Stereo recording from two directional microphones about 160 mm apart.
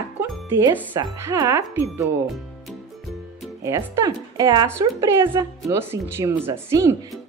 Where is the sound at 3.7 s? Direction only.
20° right (ahead or behind).